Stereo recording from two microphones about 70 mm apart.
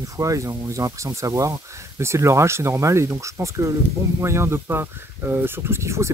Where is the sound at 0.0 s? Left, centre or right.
Right.